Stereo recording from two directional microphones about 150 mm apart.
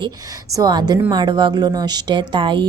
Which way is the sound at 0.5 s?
25° right (ahead or behind).